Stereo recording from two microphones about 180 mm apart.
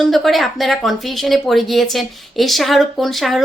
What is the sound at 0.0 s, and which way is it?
Speech, centre (ahead or behind).